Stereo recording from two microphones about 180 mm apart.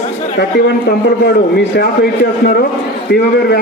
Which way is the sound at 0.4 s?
65° left (ahead or behind).